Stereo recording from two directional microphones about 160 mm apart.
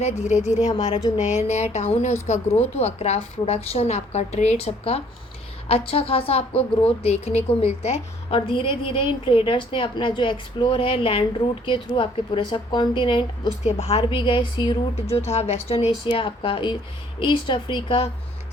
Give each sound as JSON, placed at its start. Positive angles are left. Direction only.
{"t": 0.0, "sound": "a woman's voice", "side_deg": 45}
{"t": 15.1, "sound": "a woman's voice", "side_deg": 40}